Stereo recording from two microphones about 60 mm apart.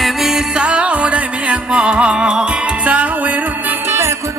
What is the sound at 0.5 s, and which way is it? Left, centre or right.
Music, centre.